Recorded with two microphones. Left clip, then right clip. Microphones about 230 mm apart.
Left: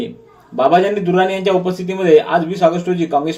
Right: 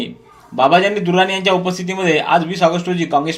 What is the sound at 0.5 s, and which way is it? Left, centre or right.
A man's voice, right.